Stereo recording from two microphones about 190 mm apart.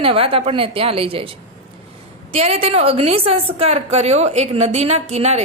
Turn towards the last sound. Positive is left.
turn(degrees=-35)  # may be behind; listen again after turning